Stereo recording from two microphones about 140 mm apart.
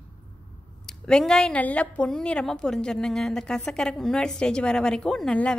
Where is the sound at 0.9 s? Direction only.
5° left (ahead or behind).